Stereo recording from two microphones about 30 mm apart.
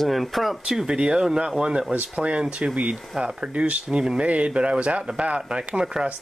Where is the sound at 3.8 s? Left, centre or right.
Right.